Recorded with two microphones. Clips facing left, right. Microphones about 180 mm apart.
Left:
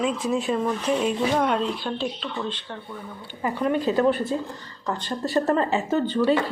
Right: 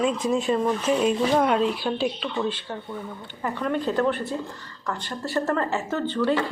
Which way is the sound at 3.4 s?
15° left (ahead or behind).